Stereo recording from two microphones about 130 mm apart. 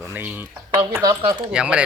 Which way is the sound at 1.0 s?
30° right (ahead or behind).